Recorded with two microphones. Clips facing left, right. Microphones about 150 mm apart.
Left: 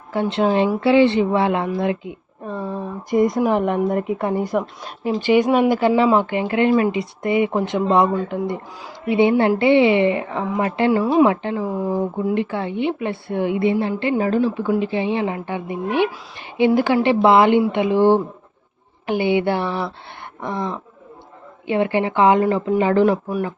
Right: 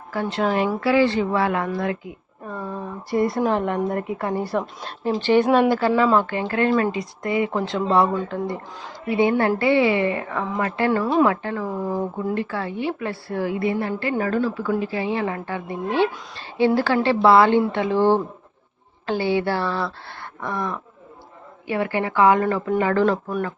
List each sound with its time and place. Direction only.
0.1 s a woman's voice: 25° left (ahead or behind)